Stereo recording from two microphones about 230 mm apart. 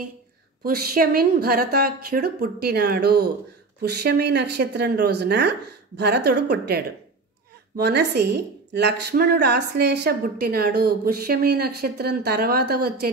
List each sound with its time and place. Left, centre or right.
0.7 s a woman's voice: right